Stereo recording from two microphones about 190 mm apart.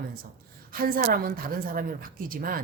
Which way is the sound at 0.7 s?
50° right (ahead or behind).